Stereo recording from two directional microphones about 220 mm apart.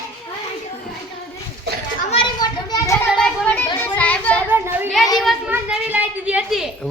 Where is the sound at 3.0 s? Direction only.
Centre (ahead or behind).